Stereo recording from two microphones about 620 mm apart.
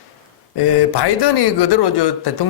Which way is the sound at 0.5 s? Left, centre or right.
Left.